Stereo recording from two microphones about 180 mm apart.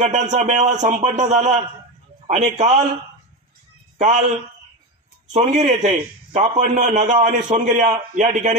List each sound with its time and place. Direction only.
0.0 s a man's voice: 40° right (ahead or behind)
4.0 s a man's voice: 45° right (ahead or behind)
5.3 s a man's voice: 40° right (ahead or behind)
8.1 s a man's voice: 50° right (ahead or behind)